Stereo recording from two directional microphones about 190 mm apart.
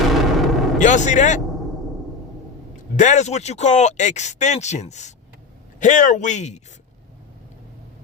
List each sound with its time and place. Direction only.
0.0 s a sound: centre (ahead or behind)
0.8 s speech: 40° left (ahead or behind)
2.9 s speech: 40° left (ahead or behind)